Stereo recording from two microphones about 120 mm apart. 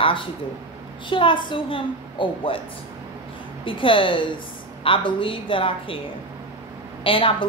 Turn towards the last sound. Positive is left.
turn(degrees=45)  # may be behind; listen again after turning